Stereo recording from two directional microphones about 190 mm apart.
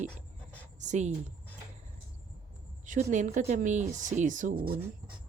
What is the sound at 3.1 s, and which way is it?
A woman's voice, 40° right (ahead or behind).